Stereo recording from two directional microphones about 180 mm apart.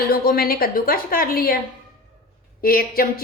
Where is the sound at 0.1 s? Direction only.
55° left (ahead or behind).